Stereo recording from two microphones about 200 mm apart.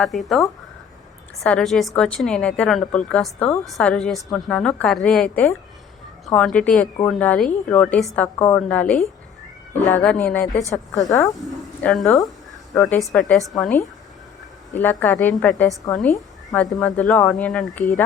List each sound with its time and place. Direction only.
0.0 s a woman's voice: centre (ahead or behind)
10.9 s a woman's voice: 15° left (ahead or behind)
11.3 s a woman's voice: 5° left (ahead or behind)
16.1 s a sound: 15° left (ahead or behind)
16.8 s a woman's voice: 5° left (ahead or behind)